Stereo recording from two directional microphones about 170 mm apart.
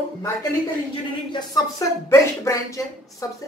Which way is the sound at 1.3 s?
20° left (ahead or behind).